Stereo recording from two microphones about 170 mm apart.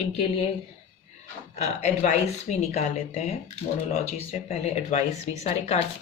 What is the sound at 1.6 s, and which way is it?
Speech, 40° left (ahead or behind).